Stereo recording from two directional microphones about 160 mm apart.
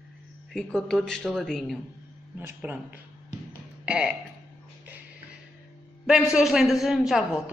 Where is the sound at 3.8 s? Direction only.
5° right (ahead or behind).